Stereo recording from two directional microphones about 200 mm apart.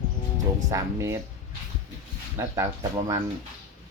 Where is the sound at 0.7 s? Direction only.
15° right (ahead or behind).